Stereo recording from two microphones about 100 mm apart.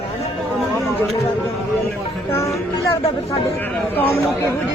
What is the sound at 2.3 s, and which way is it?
Speech, 25° left (ahead or behind).